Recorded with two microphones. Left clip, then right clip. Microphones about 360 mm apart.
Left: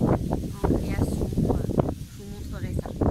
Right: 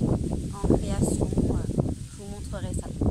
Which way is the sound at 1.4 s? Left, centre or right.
Right.